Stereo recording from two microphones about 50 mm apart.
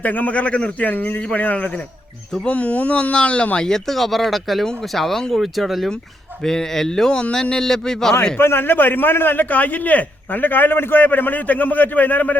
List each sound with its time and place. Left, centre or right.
0.0 s a man's voice: left
3.7 s speech: centre
6.4 s speech: centre
8.4 s a man's voice: left